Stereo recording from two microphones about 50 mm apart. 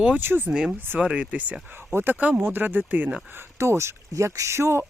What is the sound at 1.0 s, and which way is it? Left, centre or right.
Speech, right.